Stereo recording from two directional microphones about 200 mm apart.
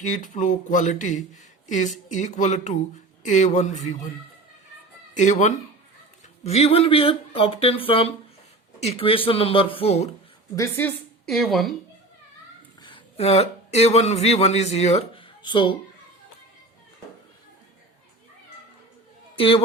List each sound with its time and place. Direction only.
0.0 s speech: 40° left (ahead or behind)
5.1 s speech: 35° left (ahead or behind)
10.5 s a woman's voice: 10° left (ahead or behind)
12.8 s speech: 30° left (ahead or behind)
19.4 s speech: 25° left (ahead or behind)